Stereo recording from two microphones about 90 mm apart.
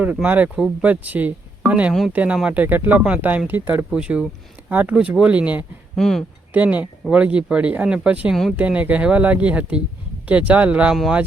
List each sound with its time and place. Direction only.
0.0 s speech: 15° right (ahead or behind)
1.9 s speech: centre (ahead or behind)
2.1 s speech: 15° right (ahead or behind)
6.0 s speech: 5° left (ahead or behind)
6.5 s speech: 15° right (ahead or behind)
8.3 s speech: centre (ahead or behind)
8.5 s speech: 15° right (ahead or behind)